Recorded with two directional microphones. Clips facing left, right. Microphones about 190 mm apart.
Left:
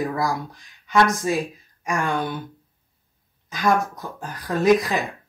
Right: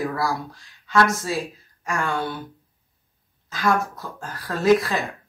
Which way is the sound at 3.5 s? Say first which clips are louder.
Left 1 dB; 15° left (ahead or behind).